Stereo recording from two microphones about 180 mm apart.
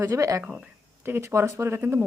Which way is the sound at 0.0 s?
15° right (ahead or behind).